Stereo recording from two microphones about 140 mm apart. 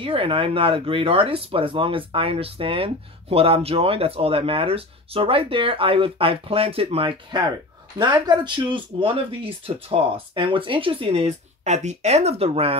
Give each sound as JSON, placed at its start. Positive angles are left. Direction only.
{"t": 0.0, "sound": "speech", "side_deg": -40}